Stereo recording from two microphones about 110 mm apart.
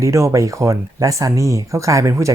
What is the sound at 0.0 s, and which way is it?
Speech, 25° right (ahead or behind).